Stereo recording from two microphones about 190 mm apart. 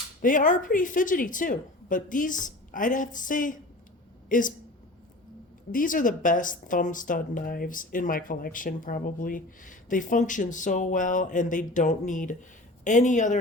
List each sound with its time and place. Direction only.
0.2 s speech: 45° left (ahead or behind)
5.7 s speech: 45° left (ahead or behind)